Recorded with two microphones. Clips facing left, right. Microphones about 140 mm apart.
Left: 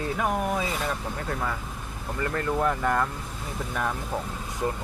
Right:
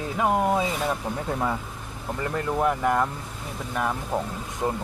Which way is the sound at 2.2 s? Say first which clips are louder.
Right 1 dB; 15° right (ahead or behind).